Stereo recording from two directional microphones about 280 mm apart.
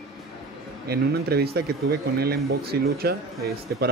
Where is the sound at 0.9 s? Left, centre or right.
Right.